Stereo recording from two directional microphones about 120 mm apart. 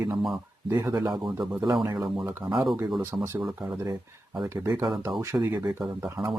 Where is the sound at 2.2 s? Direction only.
20° right (ahead or behind).